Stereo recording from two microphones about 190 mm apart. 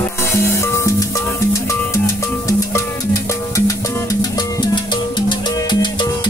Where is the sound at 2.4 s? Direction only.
15° left (ahead or behind).